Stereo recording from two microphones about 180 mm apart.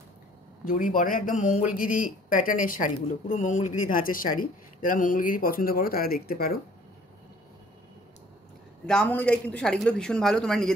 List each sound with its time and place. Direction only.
0.7 s speech: 50° left (ahead or behind)
8.8 s speech: 5° left (ahead or behind)